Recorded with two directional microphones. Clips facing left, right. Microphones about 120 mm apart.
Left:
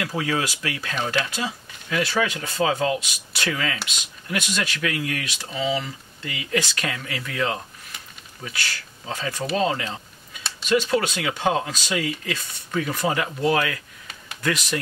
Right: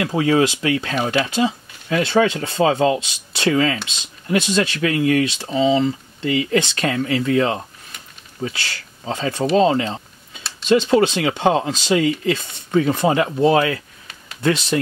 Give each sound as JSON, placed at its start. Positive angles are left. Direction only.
{"t": 0.0, "sound": "speech", "side_deg": -25}